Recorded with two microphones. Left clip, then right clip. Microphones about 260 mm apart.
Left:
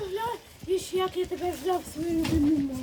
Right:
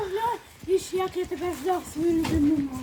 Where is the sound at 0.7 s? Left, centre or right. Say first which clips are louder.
Right 4 dB; centre.